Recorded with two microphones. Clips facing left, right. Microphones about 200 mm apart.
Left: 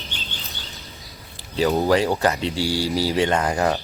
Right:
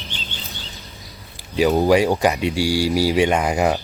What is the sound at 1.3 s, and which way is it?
Speech, 15° right (ahead or behind).